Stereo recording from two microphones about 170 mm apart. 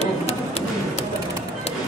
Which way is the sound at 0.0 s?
40° left (ahead or behind).